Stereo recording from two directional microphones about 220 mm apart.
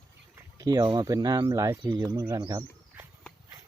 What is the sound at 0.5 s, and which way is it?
Speech, 15° right (ahead or behind).